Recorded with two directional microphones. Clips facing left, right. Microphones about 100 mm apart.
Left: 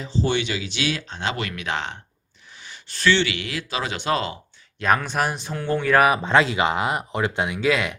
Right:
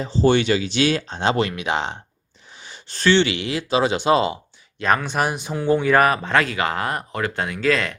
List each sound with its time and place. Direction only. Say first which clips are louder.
0.0 s speech: right 6 dB; 40° right (ahead or behind); by 2.0 s 20° right (ahead or behind)
2.6 s speech: right 2 dB; 30° right (ahead or behind)
4.8 s speech: right 1 dB; centre (ahead or behind)
6.1 s speech: left 1 dB; 20° left (ahead or behind)